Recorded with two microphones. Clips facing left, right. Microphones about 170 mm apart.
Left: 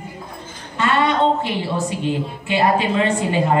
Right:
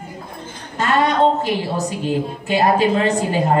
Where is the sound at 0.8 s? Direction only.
40° right (ahead or behind).